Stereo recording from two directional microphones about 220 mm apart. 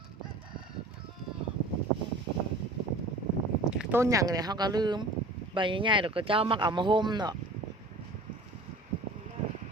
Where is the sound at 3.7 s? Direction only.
5° right (ahead or behind).